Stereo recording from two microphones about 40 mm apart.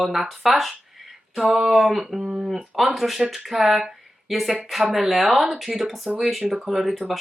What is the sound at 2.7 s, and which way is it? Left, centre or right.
Speech, centre.